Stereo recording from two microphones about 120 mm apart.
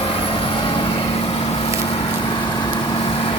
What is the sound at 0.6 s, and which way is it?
Vehicle, 50° left (ahead or behind).